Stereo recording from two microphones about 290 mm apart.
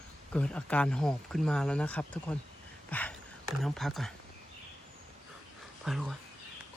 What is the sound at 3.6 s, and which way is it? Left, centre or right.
Speech, centre.